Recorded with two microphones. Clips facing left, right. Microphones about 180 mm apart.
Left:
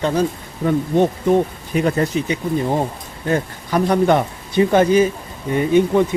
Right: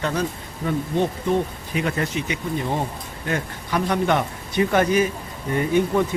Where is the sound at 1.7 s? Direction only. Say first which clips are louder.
Left 6 dB; 35° left (ahead or behind).